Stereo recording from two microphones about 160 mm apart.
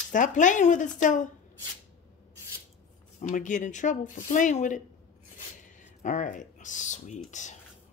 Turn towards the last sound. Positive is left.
turn(degrees=50)  # may be behind; listen again after turning